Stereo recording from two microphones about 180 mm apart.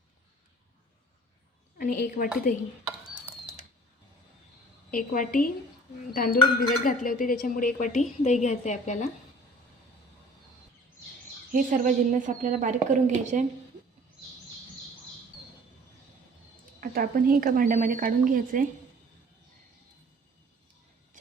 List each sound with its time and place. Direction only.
1.8 s speech: 50° left (ahead or behind)
4.9 s speech: 50° left (ahead or behind)
11.5 s a woman's voice: 50° right (ahead or behind)
16.8 s a woman's voice: 50° right (ahead or behind)